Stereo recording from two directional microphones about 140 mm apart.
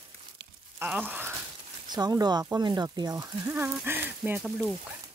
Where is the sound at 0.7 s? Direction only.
10° right (ahead or behind).